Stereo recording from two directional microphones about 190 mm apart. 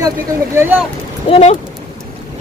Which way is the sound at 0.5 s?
15° right (ahead or behind).